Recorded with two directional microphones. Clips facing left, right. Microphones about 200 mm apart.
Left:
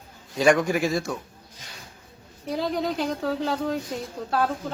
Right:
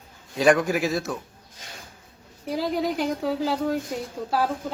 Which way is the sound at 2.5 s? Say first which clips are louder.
Right 1 dB; 5° right (ahead or behind).